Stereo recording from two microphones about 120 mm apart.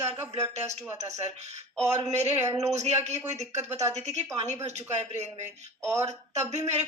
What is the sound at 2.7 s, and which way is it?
Speech, 70° right (ahead or behind).